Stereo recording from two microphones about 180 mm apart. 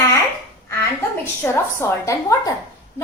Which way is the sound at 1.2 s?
10° left (ahead or behind).